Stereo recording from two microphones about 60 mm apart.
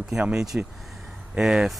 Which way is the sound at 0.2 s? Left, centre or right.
Centre.